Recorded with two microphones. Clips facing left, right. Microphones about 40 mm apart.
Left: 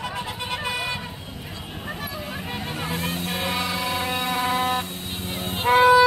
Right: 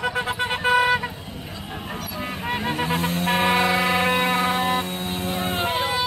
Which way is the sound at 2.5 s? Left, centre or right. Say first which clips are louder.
Right 6 dB; right.